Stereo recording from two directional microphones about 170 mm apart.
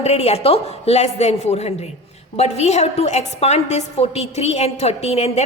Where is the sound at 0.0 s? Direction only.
40° left (ahead or behind).